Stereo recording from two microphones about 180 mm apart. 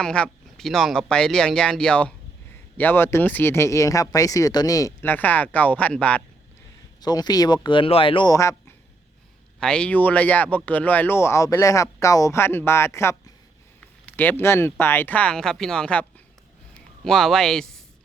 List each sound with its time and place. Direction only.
0.0 s speech: 5° left (ahead or behind)
7.0 s speech: 20° left (ahead or behind)
9.6 s speech: 5° left (ahead or behind)